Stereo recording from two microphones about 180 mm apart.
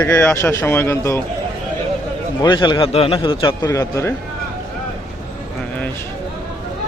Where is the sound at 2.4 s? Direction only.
25° left (ahead or behind).